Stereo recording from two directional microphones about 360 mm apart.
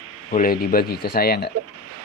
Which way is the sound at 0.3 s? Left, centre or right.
Left.